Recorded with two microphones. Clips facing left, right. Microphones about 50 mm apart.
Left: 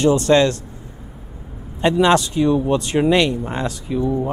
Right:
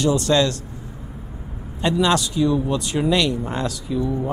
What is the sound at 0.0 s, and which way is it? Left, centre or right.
Speech, left.